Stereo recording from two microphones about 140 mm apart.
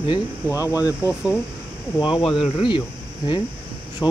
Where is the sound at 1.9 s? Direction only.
35° left (ahead or behind).